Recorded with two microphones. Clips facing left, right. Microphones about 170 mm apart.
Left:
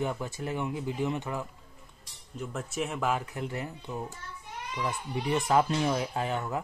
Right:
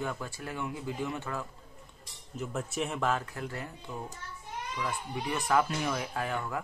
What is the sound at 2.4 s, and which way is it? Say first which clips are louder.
Cutlery: even; centre (ahead or behind).